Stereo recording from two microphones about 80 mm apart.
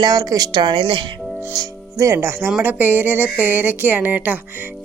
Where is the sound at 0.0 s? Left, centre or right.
Right.